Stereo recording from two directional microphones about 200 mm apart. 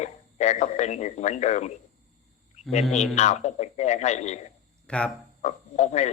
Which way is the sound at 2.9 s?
35° left (ahead or behind).